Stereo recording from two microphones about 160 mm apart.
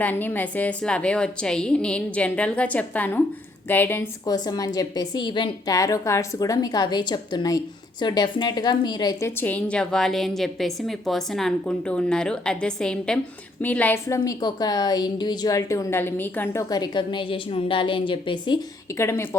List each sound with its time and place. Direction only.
0.0 s a woman's voice: 10° left (ahead or behind)
4.4 s a woman's voice: 25° left (ahead or behind)
9.4 s a woman's voice: 10° left (ahead or behind); by 18.6 s 30° left (ahead or behind)
18.9 s a woman's voice: 15° left (ahead or behind)